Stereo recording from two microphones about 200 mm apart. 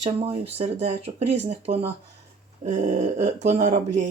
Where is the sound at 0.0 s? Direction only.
30° right (ahead or behind).